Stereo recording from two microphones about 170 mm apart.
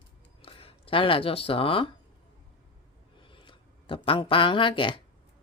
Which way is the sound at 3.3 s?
30° left (ahead or behind).